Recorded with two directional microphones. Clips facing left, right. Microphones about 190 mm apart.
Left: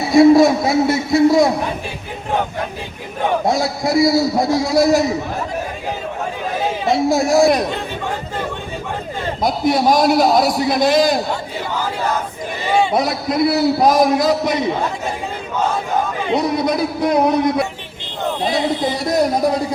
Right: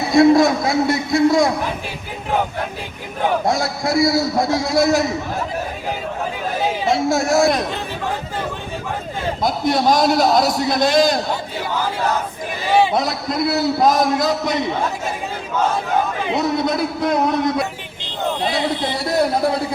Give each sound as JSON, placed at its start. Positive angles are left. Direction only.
{"t": 0.0, "sound": "a sound", "side_deg": 0}
{"t": 0.7, "sound": "a man's voice", "side_deg": 0}
{"t": 3.2, "sound": "a man's voice", "side_deg": 0}
{"t": 6.8, "sound": "a man's voice", "side_deg": 0}
{"t": 9.4, "sound": "a man's voice", "side_deg": 0}
{"t": 12.7, "sound": "a man's voice", "side_deg": 0}
{"t": 16.2, "sound": "a man's voice", "side_deg": 0}
{"t": 18.9, "sound": "speech", "side_deg": 20}